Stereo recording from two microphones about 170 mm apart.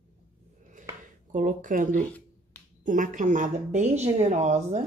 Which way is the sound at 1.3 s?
50° right (ahead or behind).